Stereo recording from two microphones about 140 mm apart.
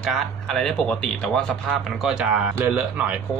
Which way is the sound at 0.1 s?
5° left (ahead or behind).